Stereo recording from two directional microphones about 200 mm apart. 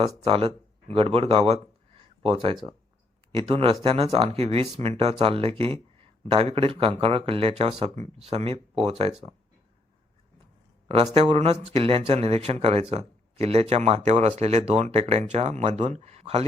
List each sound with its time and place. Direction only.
0.0 s speech: 25° right (ahead or behind)
10.8 s speech: 30° right (ahead or behind)